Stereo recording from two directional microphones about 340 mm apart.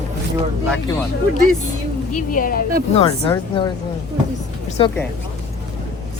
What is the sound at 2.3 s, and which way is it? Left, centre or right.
Speech, left.